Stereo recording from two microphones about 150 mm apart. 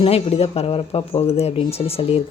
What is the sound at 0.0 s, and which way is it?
Speech, 40° left (ahead or behind).